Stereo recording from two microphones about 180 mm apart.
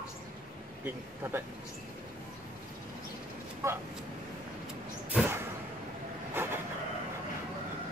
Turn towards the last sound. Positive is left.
turn(degrees=-10)  # may be behind; listen again after turning